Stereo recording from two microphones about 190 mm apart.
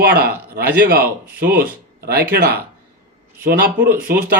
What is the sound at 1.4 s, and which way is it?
Speech, 55° right (ahead or behind).